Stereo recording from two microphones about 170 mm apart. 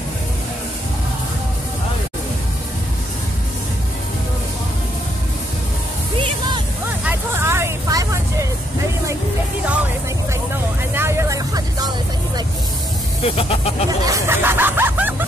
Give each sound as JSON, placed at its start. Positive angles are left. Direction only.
{"t": 7.1, "sound": "music", "side_deg": -15}
{"t": 10.9, "sound": "vehicle", "side_deg": -15}
{"t": 13.2, "sound": "vehicle", "side_deg": 35}
{"t": 13.8, "sound": "hubbub", "side_deg": -20}